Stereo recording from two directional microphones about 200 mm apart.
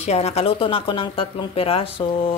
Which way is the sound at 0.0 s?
30° left (ahead or behind).